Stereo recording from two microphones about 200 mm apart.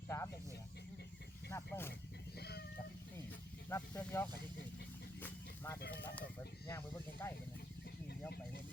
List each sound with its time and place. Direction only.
0.1 s snake: 15° left (ahead or behind)
1.5 s speech: 15° left (ahead or behind)
2.4 s a sound: 55° left (ahead or behind)
3.7 s speech: 10° left (ahead or behind)
5.2 s vehicle: 15° left (ahead or behind)
5.9 s speech: 10° left (ahead or behind)